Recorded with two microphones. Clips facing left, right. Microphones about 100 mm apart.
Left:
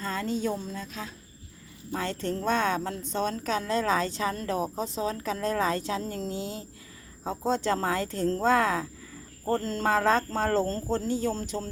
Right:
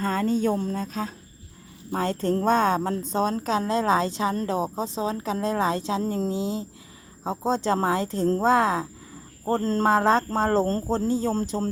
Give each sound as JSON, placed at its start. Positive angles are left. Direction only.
{"t": 0.0, "sound": "a woman's voice", "side_deg": -45}
{"t": 9.5, "sound": "a woman's voice", "side_deg": -40}